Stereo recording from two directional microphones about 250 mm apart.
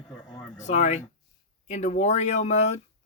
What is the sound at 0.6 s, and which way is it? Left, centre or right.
Speech, left.